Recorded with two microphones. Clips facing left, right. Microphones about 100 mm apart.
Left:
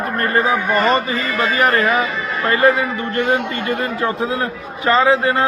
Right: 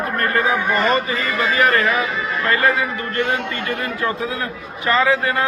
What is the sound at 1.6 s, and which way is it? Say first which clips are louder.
A man's voice: left 2 dB; 25° left (ahead or behind).